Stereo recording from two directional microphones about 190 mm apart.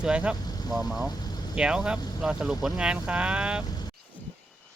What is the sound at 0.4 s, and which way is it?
Vehicle, 20° left (ahead or behind).